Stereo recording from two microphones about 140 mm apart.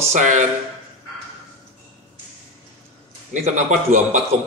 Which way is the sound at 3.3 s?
60° right (ahead or behind).